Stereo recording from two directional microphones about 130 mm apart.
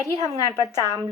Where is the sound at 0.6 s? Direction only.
25° left (ahead or behind).